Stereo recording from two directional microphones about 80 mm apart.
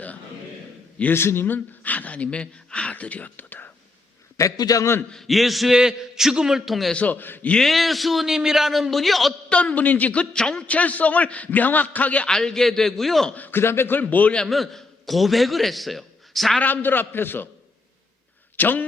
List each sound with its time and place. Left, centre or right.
1.1 s speech: left
4.4 s a man's voice: left
5.1 s a man's voice: centre
6.9 s a man's voice: centre
7.5 s a man's voice: centre
9.5 s a man's voice: centre
12.3 s a man's voice: centre
13.3 s a man's voice: left
14.4 s a man's voice: centre
16.6 s a man's voice: left
18.5 s speech: left